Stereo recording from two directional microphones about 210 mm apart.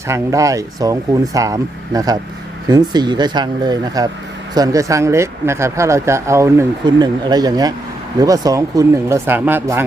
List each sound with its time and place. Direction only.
0.1 s speech: 15° right (ahead or behind)